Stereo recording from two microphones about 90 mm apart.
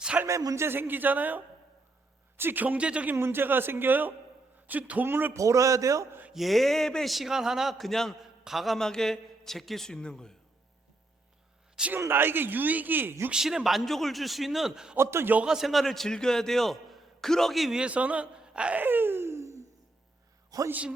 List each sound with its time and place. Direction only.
0.3 s speech: 35° right (ahead or behind); by 3.2 s 15° right (ahead or behind)
3.2 s speech: 25° right (ahead or behind)
5.4 s a man's voice: 35° right (ahead or behind)
6.3 s a man's voice: centre (ahead or behind)
11.9 s speech: 25° right (ahead or behind)
13.3 s a man's voice: 5° right (ahead or behind)
14.9 s speech: 30° right (ahead or behind)
15.4 s a man's voice: 5° right (ahead or behind); by 19.6 s 35° right (ahead or behind)
20.7 s speech: 15° right (ahead or behind)